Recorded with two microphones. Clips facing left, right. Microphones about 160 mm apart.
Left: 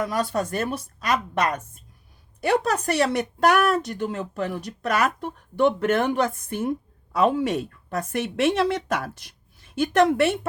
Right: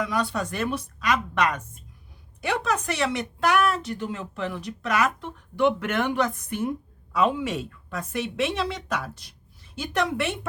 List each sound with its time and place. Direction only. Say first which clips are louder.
0.0 s a woman's voice: left 2 dB; 45° left (ahead or behind)